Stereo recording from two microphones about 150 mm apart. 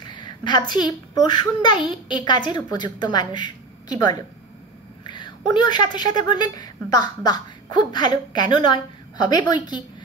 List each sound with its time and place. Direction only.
0.0 s a woman's voice: 30° left (ahead or behind)